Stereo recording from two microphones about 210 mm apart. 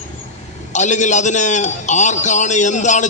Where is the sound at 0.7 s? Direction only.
35° left (ahead or behind).